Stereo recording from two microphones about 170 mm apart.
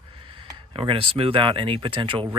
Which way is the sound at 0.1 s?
30° right (ahead or behind).